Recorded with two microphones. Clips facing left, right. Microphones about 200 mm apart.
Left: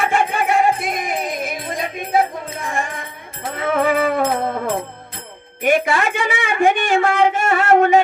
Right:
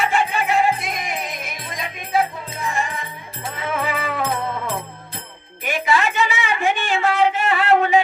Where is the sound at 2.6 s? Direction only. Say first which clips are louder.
Right 1 dB; 50° left (ahead or behind).